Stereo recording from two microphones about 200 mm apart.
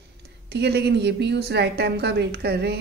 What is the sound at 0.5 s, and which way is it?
Speech, 55° right (ahead or behind).